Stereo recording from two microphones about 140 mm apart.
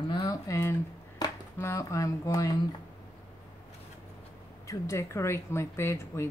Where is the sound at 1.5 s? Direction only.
20° left (ahead or behind).